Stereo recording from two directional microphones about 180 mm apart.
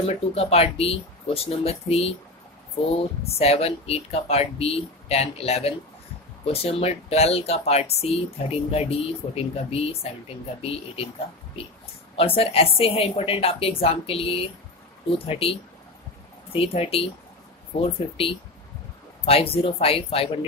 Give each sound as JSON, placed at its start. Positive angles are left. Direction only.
{"t": 0.1, "sound": "speech", "side_deg": 35}
{"t": 12.2, "sound": "speech", "side_deg": 30}